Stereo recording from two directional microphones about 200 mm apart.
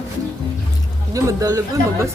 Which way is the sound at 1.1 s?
15° right (ahead or behind).